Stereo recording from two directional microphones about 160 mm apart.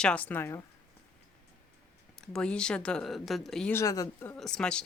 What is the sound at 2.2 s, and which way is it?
A woman's voice, 5° left (ahead or behind).